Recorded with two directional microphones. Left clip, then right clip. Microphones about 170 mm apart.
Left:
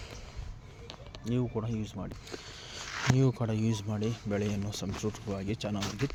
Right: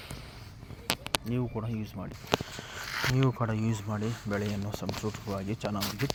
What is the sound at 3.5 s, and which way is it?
Speech, 25° left (ahead or behind).